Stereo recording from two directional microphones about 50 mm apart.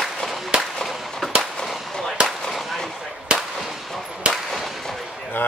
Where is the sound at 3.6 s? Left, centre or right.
Centre.